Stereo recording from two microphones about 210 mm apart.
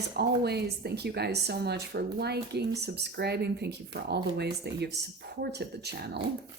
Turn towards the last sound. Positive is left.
turn(degrees=-50)  # may be behind; listen again after turning